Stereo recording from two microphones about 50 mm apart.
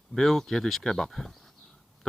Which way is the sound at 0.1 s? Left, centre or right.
Centre.